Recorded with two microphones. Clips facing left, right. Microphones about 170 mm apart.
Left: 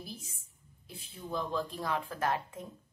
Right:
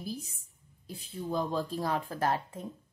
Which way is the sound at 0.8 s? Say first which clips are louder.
Right 7 dB; 40° right (ahead or behind).